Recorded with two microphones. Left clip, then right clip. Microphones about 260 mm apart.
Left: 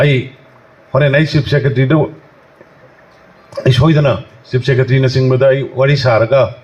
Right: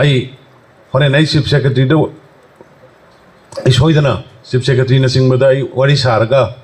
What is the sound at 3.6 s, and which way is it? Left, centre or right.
A man's voice, right.